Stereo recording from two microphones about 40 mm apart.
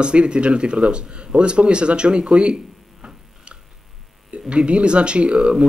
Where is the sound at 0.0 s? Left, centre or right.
Right.